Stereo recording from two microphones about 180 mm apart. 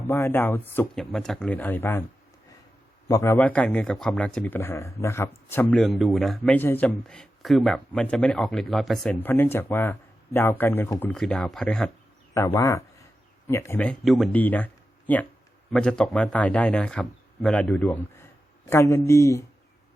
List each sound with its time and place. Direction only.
0.0 s speech: 10° left (ahead or behind)
3.1 s speech: 15° left (ahead or behind)
9.2 s speech: 10° left (ahead or behind)
12.5 s speech: 15° left (ahead or behind)